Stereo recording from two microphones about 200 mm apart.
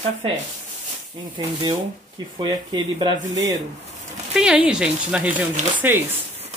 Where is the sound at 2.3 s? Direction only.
20° right (ahead or behind).